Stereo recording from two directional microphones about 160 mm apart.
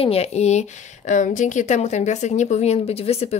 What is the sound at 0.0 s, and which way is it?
Speech, 40° left (ahead or behind).